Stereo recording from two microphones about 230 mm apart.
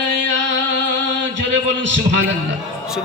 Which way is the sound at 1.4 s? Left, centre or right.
Right.